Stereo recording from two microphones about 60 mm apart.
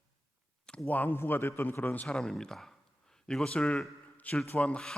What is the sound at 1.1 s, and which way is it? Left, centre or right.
Speech, left.